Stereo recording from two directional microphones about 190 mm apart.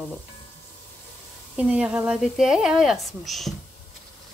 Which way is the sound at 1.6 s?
5° right (ahead or behind).